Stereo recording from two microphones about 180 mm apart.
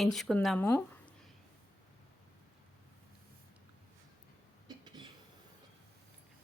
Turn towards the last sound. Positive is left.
turn(degrees=-25)  # may be behind; listen again after turning